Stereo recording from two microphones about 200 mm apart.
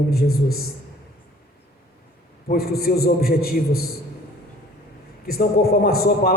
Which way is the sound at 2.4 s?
50° left (ahead or behind).